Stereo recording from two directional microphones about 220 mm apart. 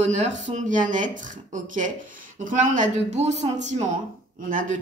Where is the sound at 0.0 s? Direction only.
35° right (ahead or behind).